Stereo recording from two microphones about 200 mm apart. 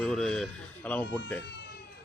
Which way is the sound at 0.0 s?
Centre (ahead or behind).